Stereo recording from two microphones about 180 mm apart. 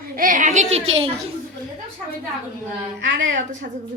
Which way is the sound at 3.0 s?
90° right.